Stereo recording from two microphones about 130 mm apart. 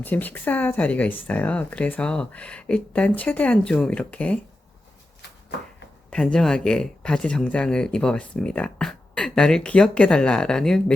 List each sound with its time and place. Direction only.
0.0 s speech: 15° left (ahead or behind)
6.1 s speech: 10° left (ahead or behind)